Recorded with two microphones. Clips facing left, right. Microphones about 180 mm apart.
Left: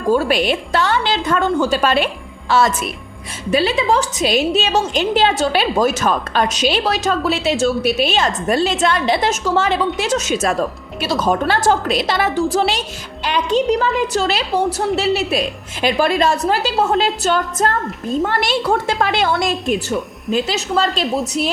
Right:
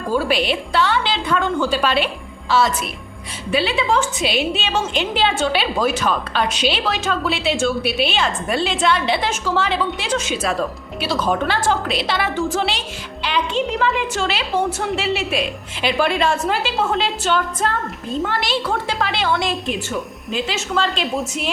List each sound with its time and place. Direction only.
0.1 s a woman's voice: 50° left (ahead or behind)